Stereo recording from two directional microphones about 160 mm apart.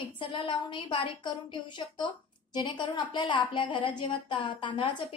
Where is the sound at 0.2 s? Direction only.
35° left (ahead or behind).